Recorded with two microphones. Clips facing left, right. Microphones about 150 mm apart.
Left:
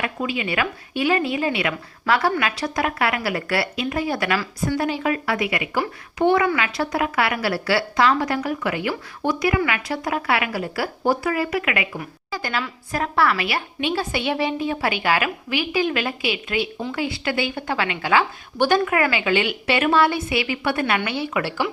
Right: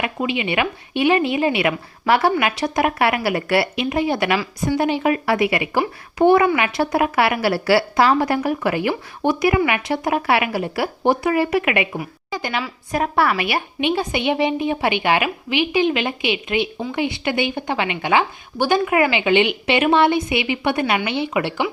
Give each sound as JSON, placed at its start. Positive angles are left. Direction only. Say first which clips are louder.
{"t": 0.3, "sound": "a woman's voice", "louder": "right 3 dB", "side_deg": -20}
{"t": 4.4, "sound": "a woman's voice", "louder": "right 3 dB", "side_deg": -10}
{"t": 4.8, "sound": "a woman's voice", "louder": "right 6 dB", "side_deg": -25}